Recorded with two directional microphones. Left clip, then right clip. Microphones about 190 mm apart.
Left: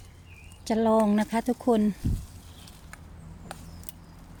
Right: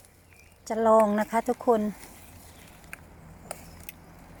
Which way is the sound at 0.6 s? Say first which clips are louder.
Right 3 dB; 20° left (ahead or behind).